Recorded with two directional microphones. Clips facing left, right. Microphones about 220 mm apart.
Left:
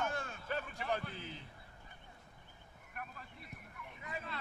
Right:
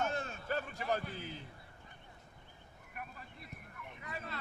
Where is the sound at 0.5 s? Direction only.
40° right (ahead or behind).